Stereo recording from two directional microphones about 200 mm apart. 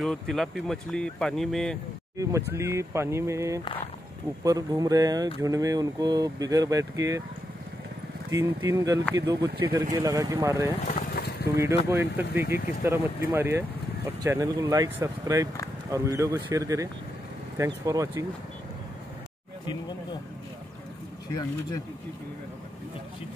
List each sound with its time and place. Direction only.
0.0 s speech: centre (ahead or behind)
2.5 s speech: 15° right (ahead or behind)
8.3 s speech: 15° right (ahead or behind)
10.9 s vehicle: 45° left (ahead or behind)
11.9 s speech: 10° right (ahead or behind)
21.4 s speech: 20° left (ahead or behind)